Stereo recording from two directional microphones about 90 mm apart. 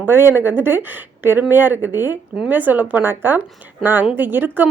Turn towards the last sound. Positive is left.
turn(degrees=-20)  # may be behind; listen again after turning